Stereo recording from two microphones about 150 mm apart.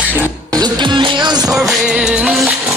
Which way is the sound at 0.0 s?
10° right (ahead or behind).